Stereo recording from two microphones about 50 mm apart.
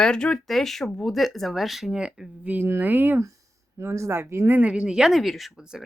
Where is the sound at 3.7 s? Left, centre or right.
Right.